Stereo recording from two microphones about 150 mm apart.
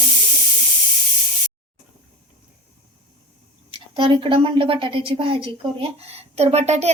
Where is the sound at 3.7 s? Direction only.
35° right (ahead or behind).